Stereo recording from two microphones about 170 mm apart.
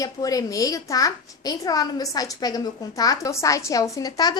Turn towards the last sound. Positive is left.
turn(degrees=25)  # may be behind; listen again after turning